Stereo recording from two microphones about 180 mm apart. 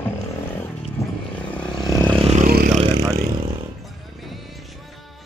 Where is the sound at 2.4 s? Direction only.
55° right (ahead or behind).